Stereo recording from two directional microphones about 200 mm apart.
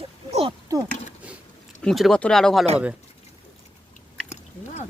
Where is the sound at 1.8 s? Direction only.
Centre (ahead or behind).